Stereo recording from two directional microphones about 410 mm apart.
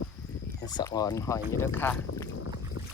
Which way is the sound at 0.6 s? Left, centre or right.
Centre.